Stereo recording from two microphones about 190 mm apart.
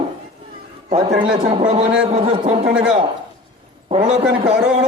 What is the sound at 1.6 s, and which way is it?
Speech, 45° right (ahead or behind).